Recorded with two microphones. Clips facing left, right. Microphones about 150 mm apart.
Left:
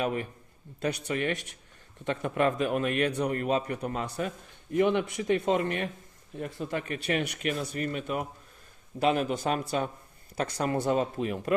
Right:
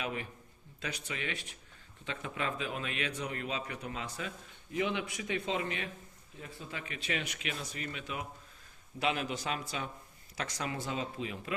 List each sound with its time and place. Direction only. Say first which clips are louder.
0.0 s speech: left 8 dB; 45° left (ahead or behind)
0.8 s speech: left 10 dB; 60° left (ahead or behind)
6.3 s speech: left 12 dB; 65° left (ahead or behind)